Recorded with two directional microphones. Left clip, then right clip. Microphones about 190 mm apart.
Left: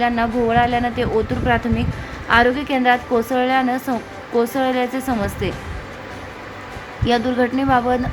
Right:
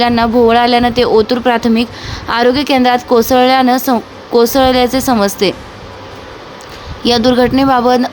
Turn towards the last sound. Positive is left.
turn(degrees=-25)  # may be behind; listen again after turning